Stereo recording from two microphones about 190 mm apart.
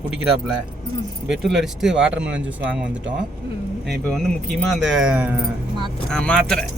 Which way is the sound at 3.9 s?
5° left (ahead or behind).